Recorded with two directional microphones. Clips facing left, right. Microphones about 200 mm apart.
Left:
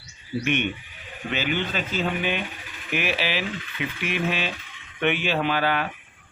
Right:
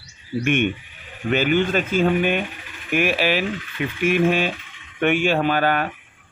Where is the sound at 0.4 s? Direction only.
50° right (ahead or behind).